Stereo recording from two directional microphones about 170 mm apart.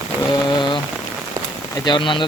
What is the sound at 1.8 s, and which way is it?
Speech, 30° left (ahead or behind).